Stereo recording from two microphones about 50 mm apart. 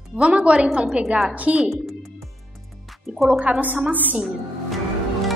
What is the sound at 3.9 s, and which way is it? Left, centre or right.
Speech, right.